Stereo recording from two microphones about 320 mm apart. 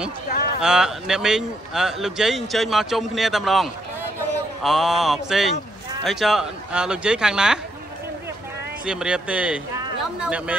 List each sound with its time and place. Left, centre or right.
0.6 s a man's voice: centre
8.8 s speech: centre